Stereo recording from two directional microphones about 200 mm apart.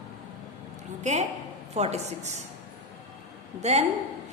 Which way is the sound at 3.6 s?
35° right (ahead or behind).